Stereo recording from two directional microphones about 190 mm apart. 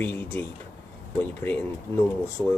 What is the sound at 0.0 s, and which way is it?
Speech, 10° left (ahead or behind).